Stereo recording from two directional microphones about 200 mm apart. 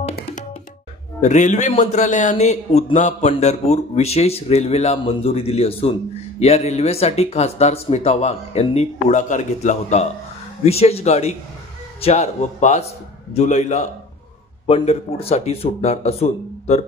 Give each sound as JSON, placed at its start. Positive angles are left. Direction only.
{"t": 0.1, "sound": "music", "side_deg": 40}
{"t": 1.2, "sound": "a man's voice", "side_deg": 35}